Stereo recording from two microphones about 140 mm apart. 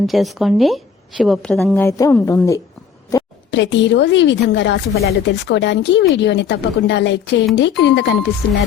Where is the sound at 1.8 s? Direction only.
20° left (ahead or behind).